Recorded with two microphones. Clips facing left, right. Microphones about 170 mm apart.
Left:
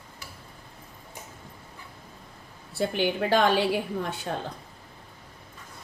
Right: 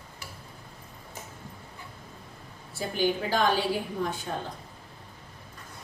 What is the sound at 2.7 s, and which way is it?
Speech, 65° left (ahead or behind).